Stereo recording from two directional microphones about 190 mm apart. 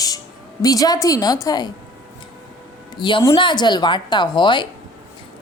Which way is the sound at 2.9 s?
25° left (ahead or behind).